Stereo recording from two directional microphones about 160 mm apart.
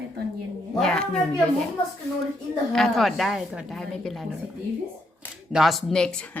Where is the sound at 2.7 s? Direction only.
Centre (ahead or behind).